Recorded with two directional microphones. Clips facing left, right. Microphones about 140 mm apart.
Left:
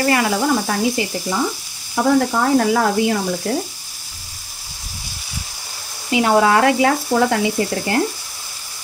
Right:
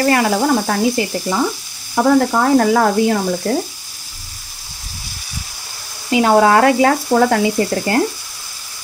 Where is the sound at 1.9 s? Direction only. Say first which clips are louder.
Right 3 dB; 55° right (ahead or behind).